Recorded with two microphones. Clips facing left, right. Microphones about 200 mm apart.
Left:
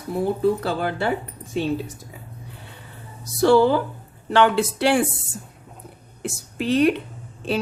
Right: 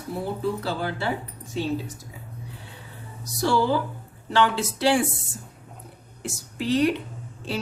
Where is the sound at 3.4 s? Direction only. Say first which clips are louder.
Left 7 dB; 55° left (ahead or behind).